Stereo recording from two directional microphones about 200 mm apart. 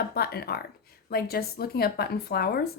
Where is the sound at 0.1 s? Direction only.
50° left (ahead or behind).